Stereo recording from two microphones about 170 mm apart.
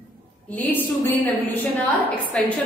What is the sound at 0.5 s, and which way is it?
Speech, 10° left (ahead or behind).